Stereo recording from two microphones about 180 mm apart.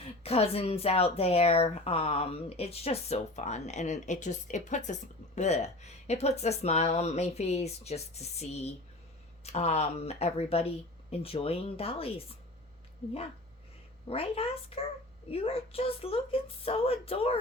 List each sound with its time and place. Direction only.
0.0 s speech: 35° left (ahead or behind)
14.1 s speech: 35° left (ahead or behind)